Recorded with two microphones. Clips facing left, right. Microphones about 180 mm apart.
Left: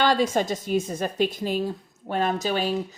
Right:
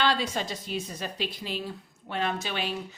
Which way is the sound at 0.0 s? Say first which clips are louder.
Left 6 dB; 45° left (ahead or behind).